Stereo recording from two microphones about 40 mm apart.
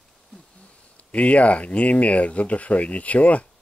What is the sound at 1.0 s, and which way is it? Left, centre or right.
Speech, left.